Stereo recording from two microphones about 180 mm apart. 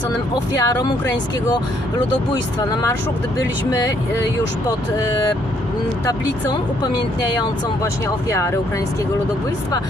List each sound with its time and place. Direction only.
0.6 s speech: 20° left (ahead or behind)
3.3 s speech: 15° left (ahead or behind)